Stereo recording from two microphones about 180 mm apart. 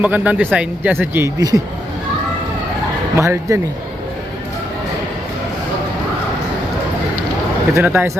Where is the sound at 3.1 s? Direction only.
15° right (ahead or behind).